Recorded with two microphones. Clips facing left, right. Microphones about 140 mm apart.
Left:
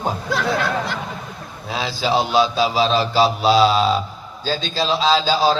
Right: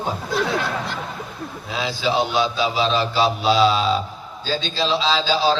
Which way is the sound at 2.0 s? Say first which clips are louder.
Left 3 dB; 35° left (ahead or behind).